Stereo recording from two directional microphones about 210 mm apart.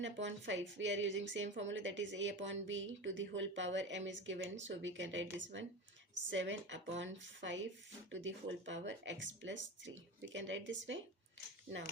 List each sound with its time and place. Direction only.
0.0 s a woman's voice: 60° right (ahead or behind)